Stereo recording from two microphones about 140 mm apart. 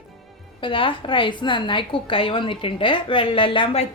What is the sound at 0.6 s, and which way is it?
A woman's voice, 35° left (ahead or behind).